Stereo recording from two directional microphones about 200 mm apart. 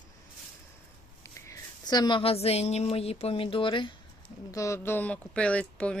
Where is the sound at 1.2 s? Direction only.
20° left (ahead or behind).